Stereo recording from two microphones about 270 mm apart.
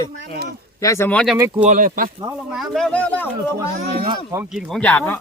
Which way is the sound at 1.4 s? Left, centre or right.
Centre.